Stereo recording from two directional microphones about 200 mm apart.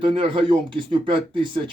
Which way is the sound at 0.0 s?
25° right (ahead or behind).